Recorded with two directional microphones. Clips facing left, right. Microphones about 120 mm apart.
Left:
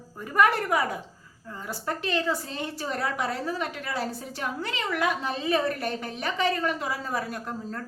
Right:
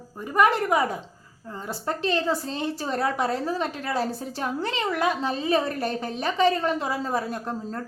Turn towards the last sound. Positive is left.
turn(degrees=-25)  # may be behind; listen again after turning